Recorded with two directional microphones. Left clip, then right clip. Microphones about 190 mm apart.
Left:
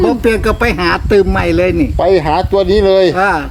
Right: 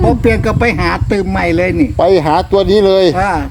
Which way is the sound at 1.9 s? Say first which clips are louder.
Right 3 dB; 55° right (ahead or behind).